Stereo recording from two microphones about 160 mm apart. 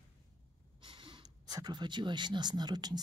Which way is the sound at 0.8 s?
30° right (ahead or behind).